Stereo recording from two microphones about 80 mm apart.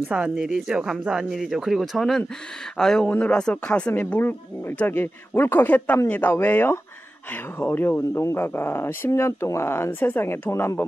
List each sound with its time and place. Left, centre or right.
0.1 s speech: centre; by 10.8 s left